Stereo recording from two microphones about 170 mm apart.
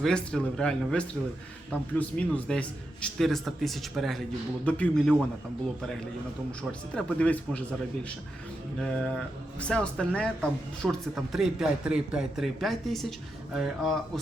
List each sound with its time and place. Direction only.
0.0 s speech: 5° left (ahead or behind)
6.6 s speech: 5° left (ahead or behind)
8.8 s speech: 5° left (ahead or behind)